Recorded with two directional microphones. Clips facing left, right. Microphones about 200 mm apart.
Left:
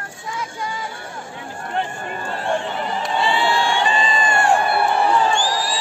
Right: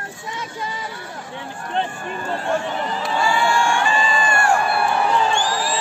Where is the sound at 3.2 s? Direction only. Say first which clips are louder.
Right 1 dB; 20° left (ahead or behind).